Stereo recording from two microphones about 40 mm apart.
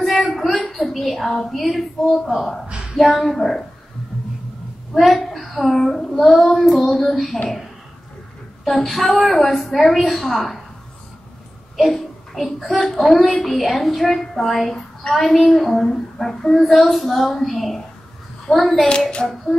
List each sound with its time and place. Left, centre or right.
0.0 s a sound: centre
1.7 s a woman's voice: centre
4.9 s a woman's voice: centre
8.6 s a woman's voice: centre
11.7 s a sound: centre
13.1 s a woman's voice: centre
15.9 s child singing: centre
16.5 s a woman's voice: centre
18.5 s child singing: centre
18.9 s child singing: left